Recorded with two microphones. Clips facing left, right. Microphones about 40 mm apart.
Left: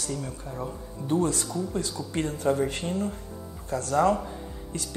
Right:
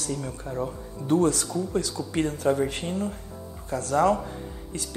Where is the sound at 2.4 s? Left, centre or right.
Centre.